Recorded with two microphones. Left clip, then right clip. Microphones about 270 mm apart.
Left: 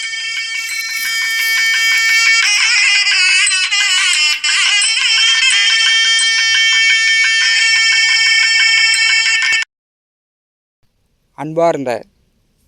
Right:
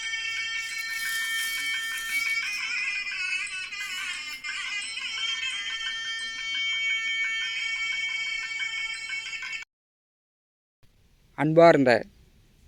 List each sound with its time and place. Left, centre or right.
0.0 s music: left
11.3 s a man's voice: centre